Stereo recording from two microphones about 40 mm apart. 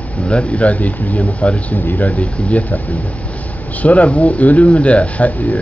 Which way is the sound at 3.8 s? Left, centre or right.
Left.